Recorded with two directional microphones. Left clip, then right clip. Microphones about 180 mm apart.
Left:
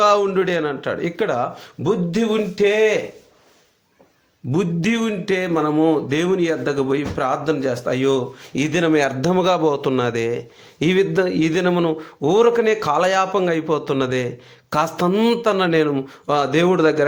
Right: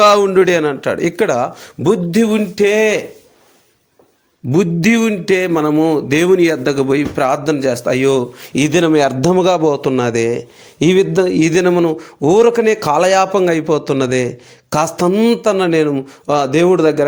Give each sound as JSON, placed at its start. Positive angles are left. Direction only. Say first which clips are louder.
{"t": 0.0, "sound": "speech", "louder": "right 7 dB", "side_deg": -50}
{"t": 4.5, "sound": "speech", "louder": "right 7 dB", "side_deg": -40}